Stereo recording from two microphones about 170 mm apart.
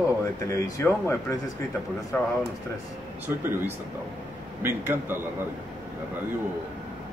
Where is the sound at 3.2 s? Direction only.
10° right (ahead or behind).